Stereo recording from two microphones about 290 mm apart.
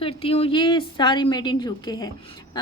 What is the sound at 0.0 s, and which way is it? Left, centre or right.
Speech, centre.